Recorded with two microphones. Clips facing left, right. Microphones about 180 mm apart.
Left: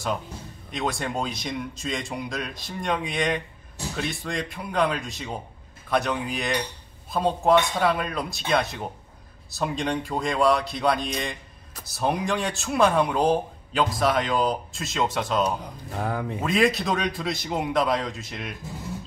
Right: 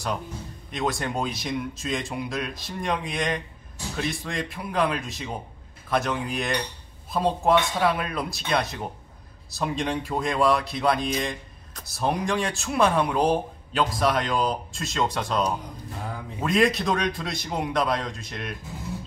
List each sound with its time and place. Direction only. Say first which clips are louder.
0.7 s speech: right 1 dB; centre (ahead or behind)
16.0 s speech: left 9 dB; 65° left (ahead or behind)
16.3 s speech: right 1 dB; centre (ahead or behind)